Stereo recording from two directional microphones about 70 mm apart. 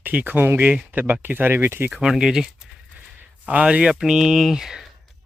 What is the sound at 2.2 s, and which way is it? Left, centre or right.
Speech, centre.